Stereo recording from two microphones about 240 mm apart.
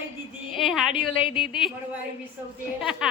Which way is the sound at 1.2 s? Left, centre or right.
Left.